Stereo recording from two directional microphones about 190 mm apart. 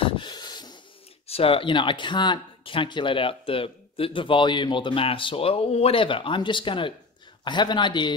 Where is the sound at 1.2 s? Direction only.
30° left (ahead or behind).